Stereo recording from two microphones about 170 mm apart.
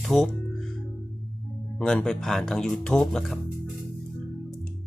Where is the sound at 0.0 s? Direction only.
Centre (ahead or behind).